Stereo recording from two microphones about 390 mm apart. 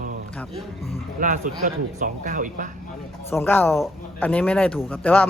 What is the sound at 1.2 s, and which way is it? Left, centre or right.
Speech, centre.